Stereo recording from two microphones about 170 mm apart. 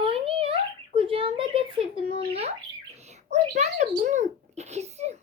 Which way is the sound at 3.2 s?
40° right (ahead or behind).